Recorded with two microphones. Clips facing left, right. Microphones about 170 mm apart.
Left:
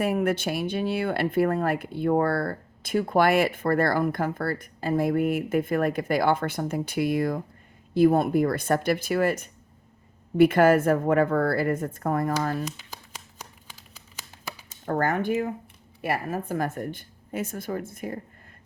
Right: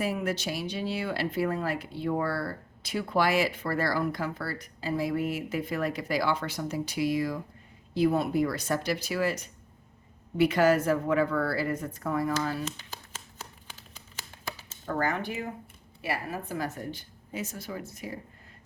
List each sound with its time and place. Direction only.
0.0 s speech: 55° left (ahead or behind)
12.6 s a sound: 15° left (ahead or behind)
14.8 s speech: 50° left (ahead or behind)